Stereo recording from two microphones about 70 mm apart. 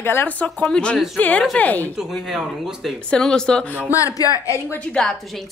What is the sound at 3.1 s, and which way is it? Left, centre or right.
Speech, centre.